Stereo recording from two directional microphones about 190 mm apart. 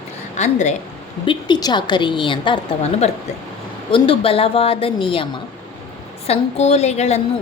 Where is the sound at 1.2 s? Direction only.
25° left (ahead or behind).